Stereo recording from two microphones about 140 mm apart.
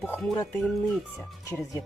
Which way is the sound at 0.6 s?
Centre (ahead or behind).